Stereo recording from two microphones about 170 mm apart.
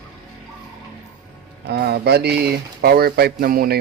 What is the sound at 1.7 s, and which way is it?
Speech, 70° right (ahead or behind).